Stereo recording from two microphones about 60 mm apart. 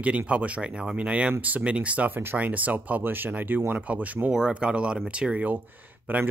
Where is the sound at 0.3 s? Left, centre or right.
Right.